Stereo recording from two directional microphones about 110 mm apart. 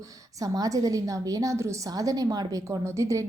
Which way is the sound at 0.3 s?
35° right (ahead or behind).